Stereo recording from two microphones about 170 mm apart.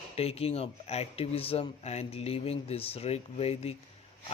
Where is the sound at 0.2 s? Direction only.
35° left (ahead or behind).